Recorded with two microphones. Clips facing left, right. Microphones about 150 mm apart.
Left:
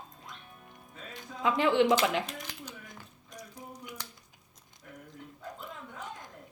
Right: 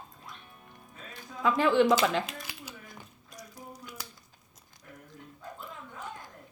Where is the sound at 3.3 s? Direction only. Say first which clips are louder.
Left 1 dB; 15° left (ahead or behind).